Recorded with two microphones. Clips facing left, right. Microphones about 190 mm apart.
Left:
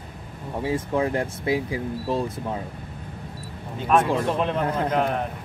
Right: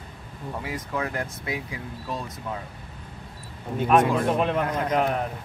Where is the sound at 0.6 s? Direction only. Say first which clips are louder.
Left 8 dB; 30° left (ahead or behind).